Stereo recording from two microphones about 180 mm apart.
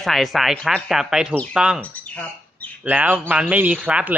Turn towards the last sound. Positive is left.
turn(degrees=-10)  # may be behind; listen again after turning